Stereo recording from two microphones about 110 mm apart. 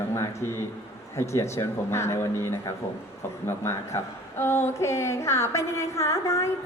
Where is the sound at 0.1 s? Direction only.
25° left (ahead or behind).